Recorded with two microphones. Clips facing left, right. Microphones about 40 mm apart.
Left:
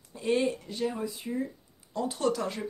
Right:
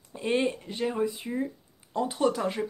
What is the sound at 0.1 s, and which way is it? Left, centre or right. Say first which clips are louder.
Speech: even; right.